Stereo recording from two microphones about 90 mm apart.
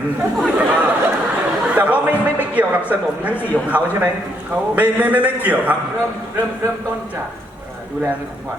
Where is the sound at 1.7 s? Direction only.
15° right (ahead or behind).